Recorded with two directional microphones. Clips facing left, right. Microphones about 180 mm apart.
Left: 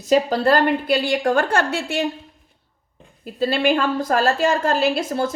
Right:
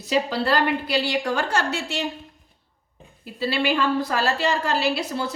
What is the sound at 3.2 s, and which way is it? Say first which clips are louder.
A woman's voice: left 5 dB; 50° left (ahead or behind).